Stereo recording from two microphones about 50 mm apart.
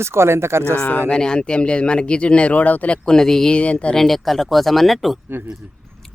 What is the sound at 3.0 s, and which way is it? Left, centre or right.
Speech, centre.